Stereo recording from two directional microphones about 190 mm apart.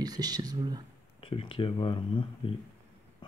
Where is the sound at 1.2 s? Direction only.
30° left (ahead or behind).